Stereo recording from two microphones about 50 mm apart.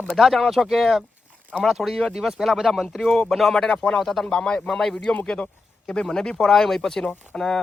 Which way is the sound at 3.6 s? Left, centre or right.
Left.